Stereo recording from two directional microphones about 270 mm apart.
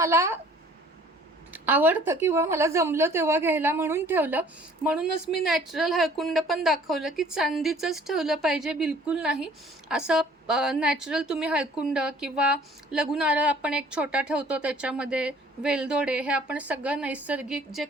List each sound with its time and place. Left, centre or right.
0.0 s a woman's voice: centre
1.5 s a woman's voice: centre